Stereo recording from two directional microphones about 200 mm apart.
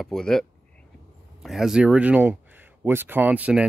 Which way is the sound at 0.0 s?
Centre (ahead or behind).